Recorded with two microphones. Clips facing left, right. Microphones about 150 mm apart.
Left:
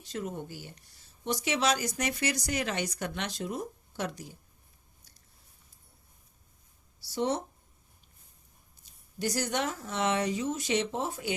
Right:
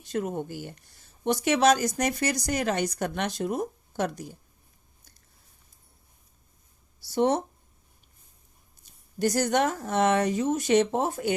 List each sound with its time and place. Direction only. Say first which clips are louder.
0.0 s speech: right 7 dB; 55° right (ahead or behind)
7.1 s speech: right 6 dB; 55° right (ahead or behind)
9.1 s speech: right 7 dB; 50° right (ahead or behind)